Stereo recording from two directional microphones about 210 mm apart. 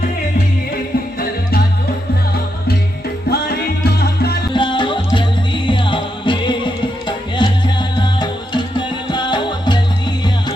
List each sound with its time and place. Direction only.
1.2 s music: 45° left (ahead or behind)
3.2 s music: 50° left (ahead or behind)
4.5 s music: 20° left (ahead or behind)